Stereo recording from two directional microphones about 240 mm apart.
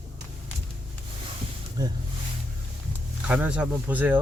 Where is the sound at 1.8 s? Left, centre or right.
Centre.